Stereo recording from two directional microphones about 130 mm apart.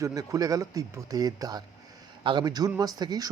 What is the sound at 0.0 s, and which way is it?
A man's voice, 25° right (ahead or behind).